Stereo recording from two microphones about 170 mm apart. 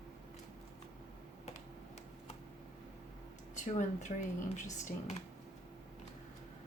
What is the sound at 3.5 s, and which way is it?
Speech, 45° left (ahead or behind).